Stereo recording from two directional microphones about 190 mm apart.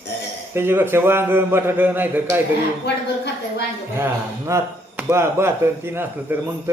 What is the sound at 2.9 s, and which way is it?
Speech, 65° left (ahead or behind).